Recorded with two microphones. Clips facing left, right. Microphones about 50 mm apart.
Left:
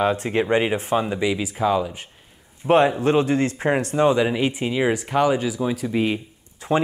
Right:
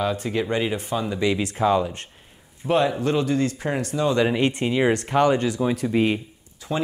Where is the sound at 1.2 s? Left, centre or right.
Centre.